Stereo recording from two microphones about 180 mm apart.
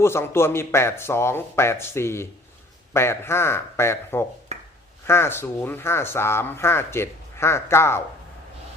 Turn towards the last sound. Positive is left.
turn(degrees=15)  # may be behind; listen again after turning